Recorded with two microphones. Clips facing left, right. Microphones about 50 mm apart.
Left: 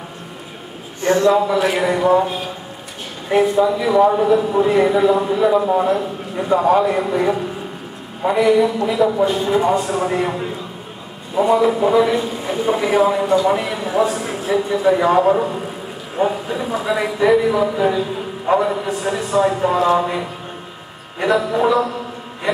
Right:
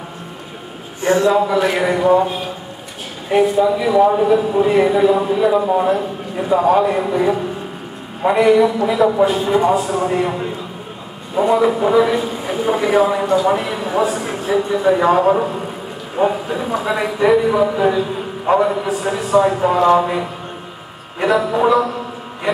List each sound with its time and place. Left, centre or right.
1.0 s a man's voice: centre
1.3 s a man's voice: centre